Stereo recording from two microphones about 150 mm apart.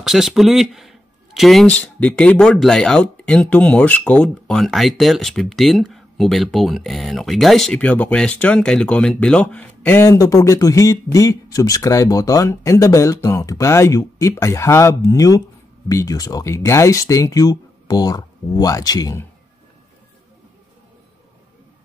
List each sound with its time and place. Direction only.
0.0 s speech: 5° right (ahead or behind); by 19.2 s 25° left (ahead or behind)